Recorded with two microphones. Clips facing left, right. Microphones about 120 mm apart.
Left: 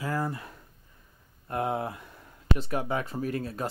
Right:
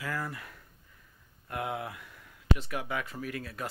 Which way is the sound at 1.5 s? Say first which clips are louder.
Left 6 dB; 35° left (ahead or behind).